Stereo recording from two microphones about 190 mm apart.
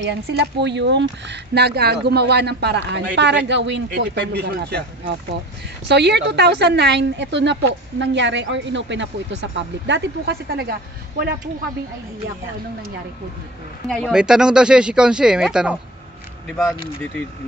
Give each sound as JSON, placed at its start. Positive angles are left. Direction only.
{"t": 0.0, "sound": "a woman's voice", "side_deg": -60}
{"t": 13.8, "sound": "speech", "side_deg": 0}